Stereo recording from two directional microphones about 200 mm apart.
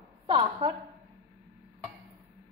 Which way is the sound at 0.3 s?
25° right (ahead or behind).